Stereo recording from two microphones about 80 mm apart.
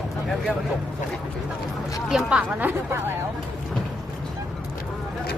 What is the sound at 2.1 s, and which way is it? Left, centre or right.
Speech, centre.